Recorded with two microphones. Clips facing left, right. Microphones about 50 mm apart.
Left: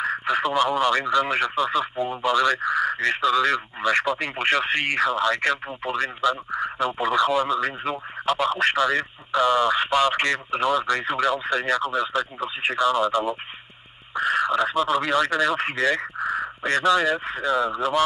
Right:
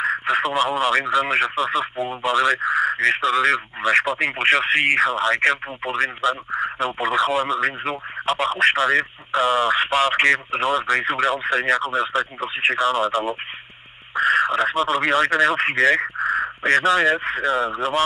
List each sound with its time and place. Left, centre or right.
0.2 s speech: right